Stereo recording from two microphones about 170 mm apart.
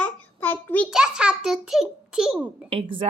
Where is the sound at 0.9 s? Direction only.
5° right (ahead or behind).